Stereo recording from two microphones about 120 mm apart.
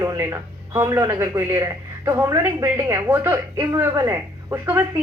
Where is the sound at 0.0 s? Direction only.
25° right (ahead or behind).